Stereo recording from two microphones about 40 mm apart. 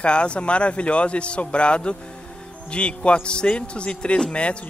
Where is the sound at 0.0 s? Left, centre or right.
Left.